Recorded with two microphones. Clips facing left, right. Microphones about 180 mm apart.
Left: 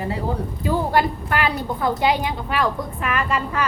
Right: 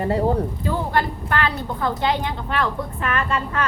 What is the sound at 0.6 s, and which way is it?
A woman's voice, 10° left (ahead or behind).